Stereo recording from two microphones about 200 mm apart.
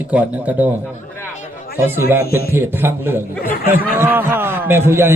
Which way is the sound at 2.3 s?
50° left (ahead or behind).